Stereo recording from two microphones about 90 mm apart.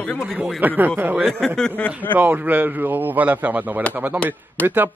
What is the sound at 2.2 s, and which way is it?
Speech, 20° right (ahead or behind).